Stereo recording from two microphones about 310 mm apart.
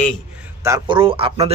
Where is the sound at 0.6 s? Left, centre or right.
Centre.